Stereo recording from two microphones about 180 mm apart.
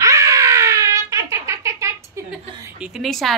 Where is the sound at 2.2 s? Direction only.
15° right (ahead or behind).